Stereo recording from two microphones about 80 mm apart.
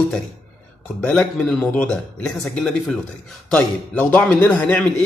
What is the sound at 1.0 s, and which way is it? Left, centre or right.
A man's voice, centre.